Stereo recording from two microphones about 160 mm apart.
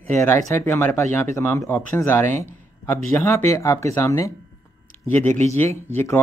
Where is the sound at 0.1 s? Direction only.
15° left (ahead or behind).